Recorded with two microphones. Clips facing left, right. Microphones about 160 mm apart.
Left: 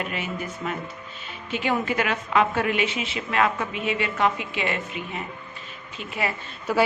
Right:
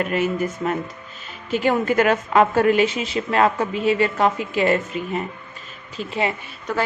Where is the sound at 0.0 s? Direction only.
45° right (ahead or behind).